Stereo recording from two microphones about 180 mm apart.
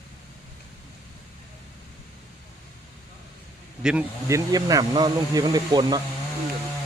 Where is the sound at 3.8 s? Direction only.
5° right (ahead or behind).